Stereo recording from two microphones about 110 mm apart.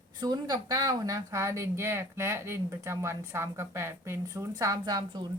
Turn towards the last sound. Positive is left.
turn(degrees=-40)  # may be behind; listen again after turning